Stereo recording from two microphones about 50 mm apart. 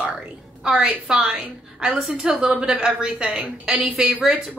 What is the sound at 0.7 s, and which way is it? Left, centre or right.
A woman's voice, centre.